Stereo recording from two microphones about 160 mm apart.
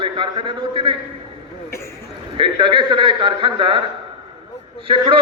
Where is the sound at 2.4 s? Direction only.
30° right (ahead or behind).